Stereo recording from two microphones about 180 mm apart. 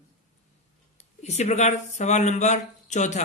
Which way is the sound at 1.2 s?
40° left (ahead or behind).